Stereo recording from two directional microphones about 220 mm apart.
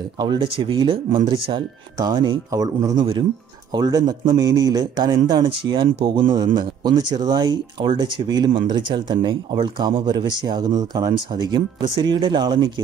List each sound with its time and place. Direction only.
0.2 s a man's voice: 20° right (ahead or behind)